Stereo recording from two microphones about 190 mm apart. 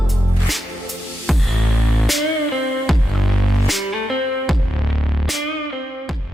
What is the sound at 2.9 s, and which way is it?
Music, centre (ahead or behind).